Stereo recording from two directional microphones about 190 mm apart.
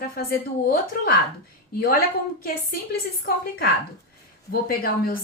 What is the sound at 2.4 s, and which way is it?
A woman's voice, 50° left (ahead or behind).